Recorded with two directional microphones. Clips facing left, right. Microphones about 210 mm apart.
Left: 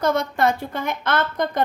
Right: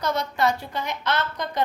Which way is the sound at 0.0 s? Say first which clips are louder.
Left 4 dB; 50° left (ahead or behind).